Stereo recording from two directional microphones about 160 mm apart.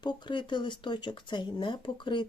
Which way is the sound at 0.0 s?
30° left (ahead or behind).